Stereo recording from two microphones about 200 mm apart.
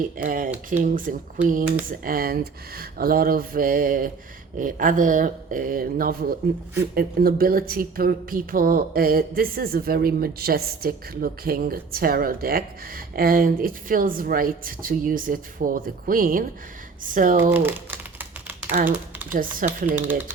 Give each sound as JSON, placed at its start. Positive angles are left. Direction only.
{"t": 0.2, "sound": "speech", "side_deg": -45}
{"t": 17.5, "sound": "typing", "side_deg": -10}
{"t": 18.8, "sound": "speech", "side_deg": -40}
{"t": 20.0, "sound": "speech", "side_deg": -10}